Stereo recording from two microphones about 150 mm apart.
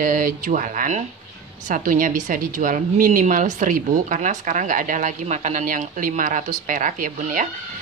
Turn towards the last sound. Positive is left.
turn(degrees=-65)  # may be behind; listen again after turning